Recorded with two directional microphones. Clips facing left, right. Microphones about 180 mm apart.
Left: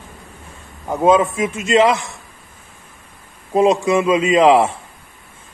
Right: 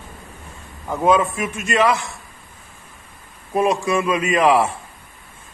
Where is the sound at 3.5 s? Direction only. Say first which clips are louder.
Left 5 dB; 20° left (ahead or behind).